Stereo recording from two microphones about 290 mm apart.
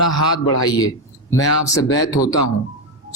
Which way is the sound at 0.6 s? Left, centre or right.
Centre.